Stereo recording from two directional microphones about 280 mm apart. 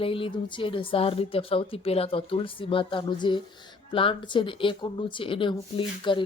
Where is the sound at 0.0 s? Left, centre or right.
Centre.